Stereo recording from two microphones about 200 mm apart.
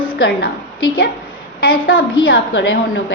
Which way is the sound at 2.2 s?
60° left (ahead or behind).